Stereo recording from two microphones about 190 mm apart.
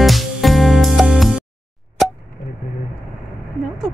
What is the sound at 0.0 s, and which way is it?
Music, centre (ahead or behind).